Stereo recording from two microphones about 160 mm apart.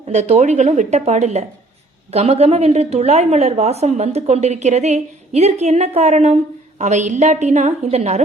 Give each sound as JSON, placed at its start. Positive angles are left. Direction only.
{"t": 0.1, "sound": "a woman's voice", "side_deg": -45}